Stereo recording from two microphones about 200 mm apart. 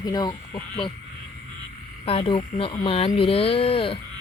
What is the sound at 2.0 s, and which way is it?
Speech, 25° left (ahead or behind).